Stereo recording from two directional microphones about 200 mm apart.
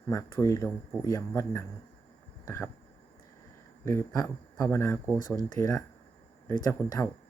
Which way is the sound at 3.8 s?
15° left (ahead or behind).